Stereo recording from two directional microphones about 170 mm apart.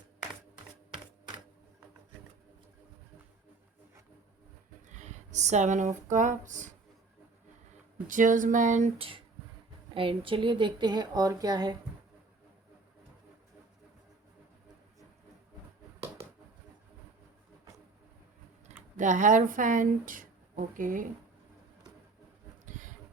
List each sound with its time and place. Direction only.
4.9 s speech: 45° right (ahead or behind)
8.0 s speech: 50° right (ahead or behind)
9.0 s a woman's voice: 30° right (ahead or behind)
18.9 s speech: 45° right (ahead or behind)
22.6 s a sound: 50° right (ahead or behind)